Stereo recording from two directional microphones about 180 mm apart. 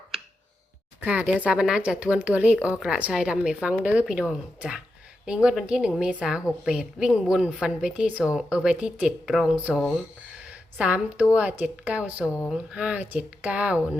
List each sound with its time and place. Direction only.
1.0 s a woman's voice: 10° right (ahead or behind)